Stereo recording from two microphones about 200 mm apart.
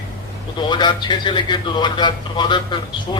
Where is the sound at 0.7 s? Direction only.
20° left (ahead or behind).